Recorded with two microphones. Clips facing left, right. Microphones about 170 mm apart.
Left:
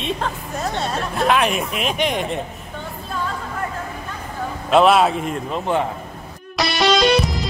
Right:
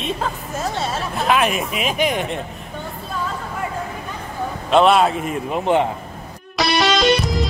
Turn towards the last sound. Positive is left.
turn(degrees=0)  # may be behind; listen again after turning